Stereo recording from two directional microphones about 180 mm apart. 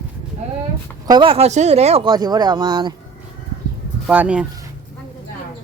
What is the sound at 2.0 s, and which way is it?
Speech, 20° right (ahead or behind).